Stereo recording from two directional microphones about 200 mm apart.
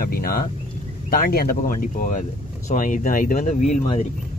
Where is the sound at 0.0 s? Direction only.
50° left (ahead or behind).